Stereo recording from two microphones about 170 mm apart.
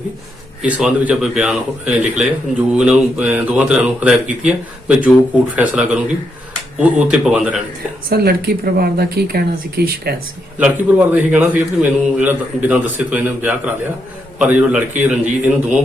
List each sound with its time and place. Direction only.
0.6 s speech: 5° right (ahead or behind)
8.1 s speech: 65° right (ahead or behind)
10.6 s speech: 10° right (ahead or behind)